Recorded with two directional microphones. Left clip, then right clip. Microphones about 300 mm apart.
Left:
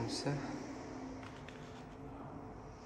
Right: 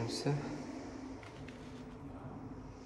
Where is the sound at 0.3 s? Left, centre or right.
Centre.